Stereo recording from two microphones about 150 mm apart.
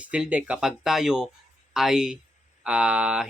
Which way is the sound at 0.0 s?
10° right (ahead or behind).